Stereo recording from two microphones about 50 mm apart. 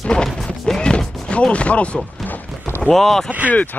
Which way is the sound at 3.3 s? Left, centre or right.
Right.